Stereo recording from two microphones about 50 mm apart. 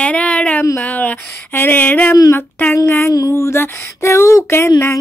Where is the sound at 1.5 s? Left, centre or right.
Left.